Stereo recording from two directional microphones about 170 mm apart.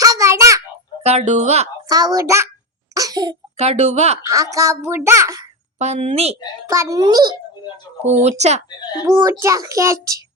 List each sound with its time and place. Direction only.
0.0 s a sound: 20° right (ahead or behind)
1.0 s speech: 40° right (ahead or behind)
1.9 s a child's voice: 20° right (ahead or behind)
2.9 s laughter: 20° right (ahead or behind)
3.6 s speech: 40° right (ahead or behind)
4.2 s a child's voice: 20° right (ahead or behind)
5.8 s speech: 40° right (ahead or behind)
6.7 s a child's voice: 20° right (ahead or behind)
8.2 s speech: 40° right (ahead or behind)
9.0 s a child's voice: 15° right (ahead or behind)